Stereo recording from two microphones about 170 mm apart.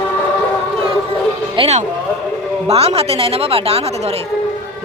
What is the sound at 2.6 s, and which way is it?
Speech, 35° right (ahead or behind).